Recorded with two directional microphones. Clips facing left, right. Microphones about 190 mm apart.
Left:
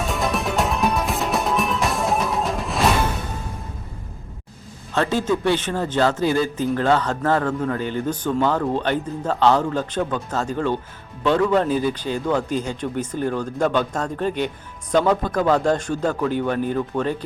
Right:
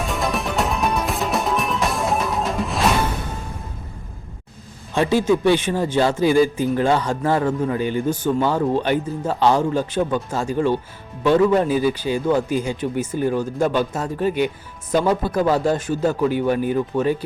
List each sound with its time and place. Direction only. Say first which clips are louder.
0.1 s music: left 1 dB; centre (ahead or behind)
4.9 s a man's voice: right 3 dB; 10° right (ahead or behind)